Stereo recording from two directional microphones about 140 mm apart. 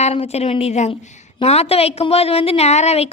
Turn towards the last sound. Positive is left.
turn(degrees=50)  # may be behind; listen again after turning